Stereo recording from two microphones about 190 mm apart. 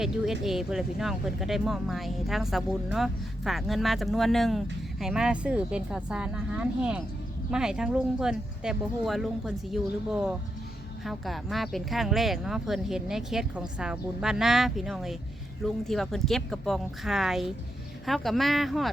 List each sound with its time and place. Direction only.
0.0 s speech: centre (ahead or behind)